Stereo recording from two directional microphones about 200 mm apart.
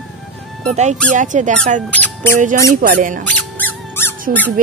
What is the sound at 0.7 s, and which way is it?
Speech, 35° right (ahead or behind).